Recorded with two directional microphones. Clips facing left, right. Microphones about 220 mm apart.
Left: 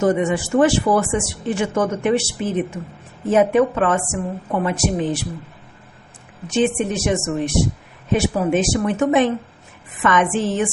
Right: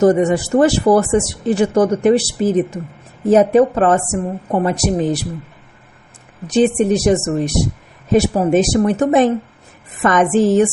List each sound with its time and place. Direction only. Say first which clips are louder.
0.0 s speech: right 5 dB; 40° right (ahead or behind)
6.5 s speech: right 6 dB; 35° right (ahead or behind)